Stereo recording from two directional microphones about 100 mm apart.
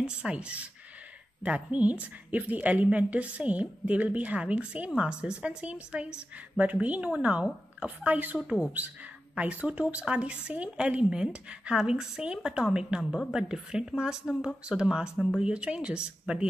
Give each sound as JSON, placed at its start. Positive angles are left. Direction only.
{"t": 0.0, "sound": "a woman's voice", "side_deg": -10}